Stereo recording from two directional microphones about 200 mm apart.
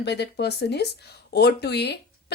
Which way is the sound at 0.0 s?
55° left (ahead or behind).